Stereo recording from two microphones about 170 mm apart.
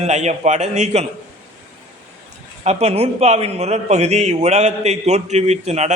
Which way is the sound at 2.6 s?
40° right (ahead or behind).